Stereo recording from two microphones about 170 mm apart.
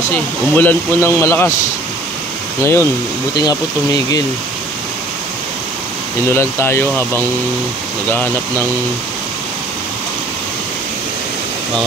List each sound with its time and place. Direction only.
0.6 s a man's voice: 15° left (ahead or behind)
2.6 s a man's voice: 15° left (ahead or behind)
6.3 s a man's voice: 15° left (ahead or behind)